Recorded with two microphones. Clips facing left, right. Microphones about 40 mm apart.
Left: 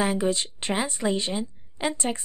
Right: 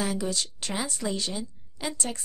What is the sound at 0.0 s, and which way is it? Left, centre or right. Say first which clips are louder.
A woman's voice: left 5 dB; left.